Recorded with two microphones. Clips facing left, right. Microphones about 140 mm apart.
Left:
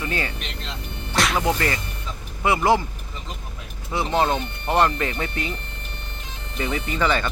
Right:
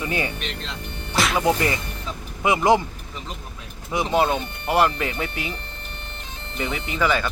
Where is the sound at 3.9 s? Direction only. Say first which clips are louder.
Right 1 dB; 10° right (ahead or behind).